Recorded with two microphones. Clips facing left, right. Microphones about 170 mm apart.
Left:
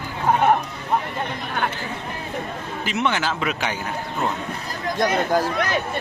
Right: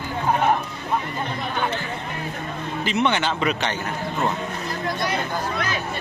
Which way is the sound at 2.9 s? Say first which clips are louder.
Right 1 dB; 5° left (ahead or behind).